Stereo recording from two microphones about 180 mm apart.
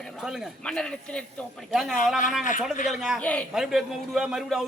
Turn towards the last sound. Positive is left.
turn(degrees=0)  # may be behind; listen again after turning